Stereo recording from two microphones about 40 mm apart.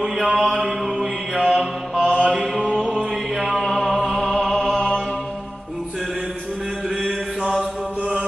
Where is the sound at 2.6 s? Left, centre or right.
Right.